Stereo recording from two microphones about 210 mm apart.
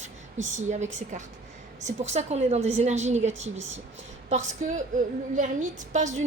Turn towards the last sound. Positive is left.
turn(degrees=-35)  # may be behind; listen again after turning